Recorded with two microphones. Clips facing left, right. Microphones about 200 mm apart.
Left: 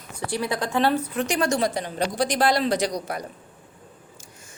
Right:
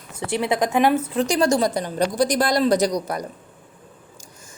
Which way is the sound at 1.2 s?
35° right (ahead or behind).